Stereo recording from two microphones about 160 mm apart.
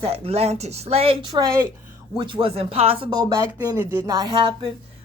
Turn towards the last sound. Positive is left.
turn(degrees=-30)  # may be behind; listen again after turning